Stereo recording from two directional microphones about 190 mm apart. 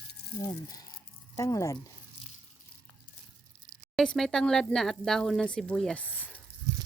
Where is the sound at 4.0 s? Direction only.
Centre (ahead or behind).